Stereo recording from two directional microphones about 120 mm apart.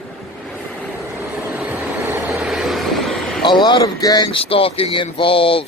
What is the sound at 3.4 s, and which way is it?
Speech, 40° left (ahead or behind).